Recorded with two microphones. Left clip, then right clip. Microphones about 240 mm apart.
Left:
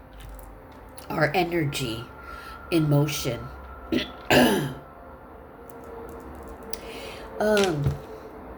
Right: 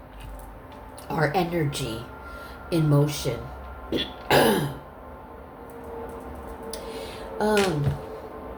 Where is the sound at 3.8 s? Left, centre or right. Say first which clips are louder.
Even; left.